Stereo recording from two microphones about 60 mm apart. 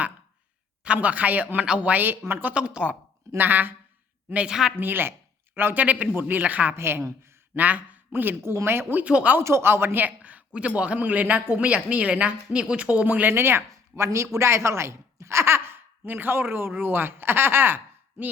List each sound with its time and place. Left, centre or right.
1.0 s a woman's voice: right
2.5 s a woman's voice: centre
3.3 s speech: right
4.4 s a woman's voice: centre
4.8 s a woman's voice: right
6.7 s speech: right
7.5 s a man's voice: right
8.4 s speech: right
9.0 s a woman's voice: right
9.4 s a woman's voice: right
13.3 s speech: right
13.7 s speech: right